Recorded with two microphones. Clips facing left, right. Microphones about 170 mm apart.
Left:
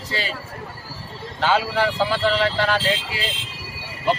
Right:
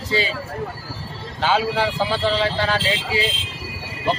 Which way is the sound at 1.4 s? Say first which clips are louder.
Even; 15° right (ahead or behind).